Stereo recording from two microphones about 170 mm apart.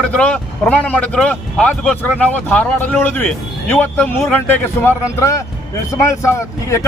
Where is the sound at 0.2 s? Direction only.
5° left (ahead or behind).